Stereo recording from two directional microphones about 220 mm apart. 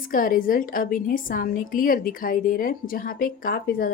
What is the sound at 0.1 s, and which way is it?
A woman's voice, 40° left (ahead or behind).